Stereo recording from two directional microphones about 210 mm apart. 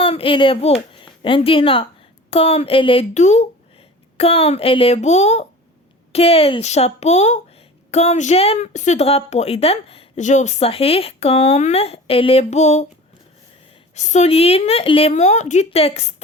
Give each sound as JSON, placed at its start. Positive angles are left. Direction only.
{"t": 0.0, "sound": "a woman's voice", "side_deg": 25}
{"t": 13.9, "sound": "speech", "side_deg": 35}